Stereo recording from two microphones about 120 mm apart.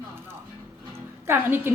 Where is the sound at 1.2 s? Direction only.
20° right (ahead or behind).